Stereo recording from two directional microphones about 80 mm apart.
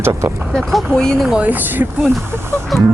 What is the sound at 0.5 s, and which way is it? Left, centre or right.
Speech, centre.